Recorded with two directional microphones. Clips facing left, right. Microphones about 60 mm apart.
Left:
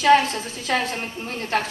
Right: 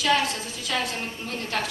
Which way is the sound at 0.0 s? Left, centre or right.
Left.